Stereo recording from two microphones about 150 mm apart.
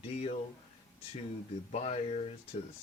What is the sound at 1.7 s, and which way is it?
Speech, 45° left (ahead or behind).